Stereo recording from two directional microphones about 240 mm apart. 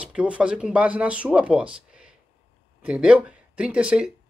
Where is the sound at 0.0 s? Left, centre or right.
Centre.